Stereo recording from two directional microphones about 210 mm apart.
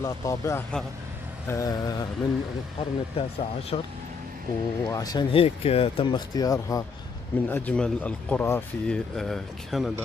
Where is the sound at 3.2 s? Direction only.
30° left (ahead or behind).